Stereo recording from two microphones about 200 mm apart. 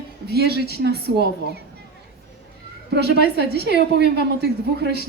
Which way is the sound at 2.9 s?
55° right (ahead or behind).